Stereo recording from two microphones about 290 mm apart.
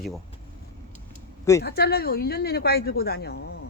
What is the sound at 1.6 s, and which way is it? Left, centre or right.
Speech, left.